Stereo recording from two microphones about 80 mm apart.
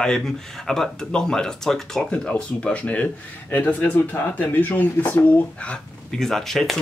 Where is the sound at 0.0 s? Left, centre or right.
Centre.